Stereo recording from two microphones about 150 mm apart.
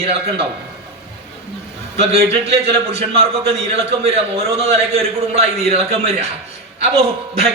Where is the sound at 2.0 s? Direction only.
40° right (ahead or behind).